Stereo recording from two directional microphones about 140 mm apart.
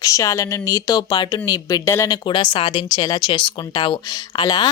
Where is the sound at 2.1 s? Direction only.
35° left (ahead or behind).